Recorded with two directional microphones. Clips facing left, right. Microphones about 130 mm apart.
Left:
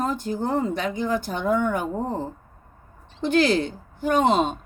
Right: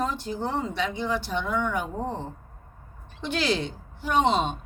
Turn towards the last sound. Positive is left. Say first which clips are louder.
# left 3 dB
turn(degrees=45)  # may be behind; listen again after turning